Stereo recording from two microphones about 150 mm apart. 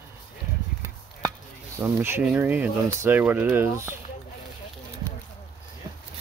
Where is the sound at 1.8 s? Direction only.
15° right (ahead or behind).